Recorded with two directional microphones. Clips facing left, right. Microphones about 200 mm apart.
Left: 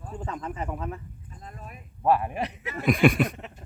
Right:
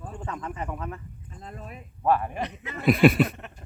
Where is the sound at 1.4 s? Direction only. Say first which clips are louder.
Right 3 dB; 35° right (ahead or behind).